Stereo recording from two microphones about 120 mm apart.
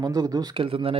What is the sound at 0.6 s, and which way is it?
Speech, 50° right (ahead or behind).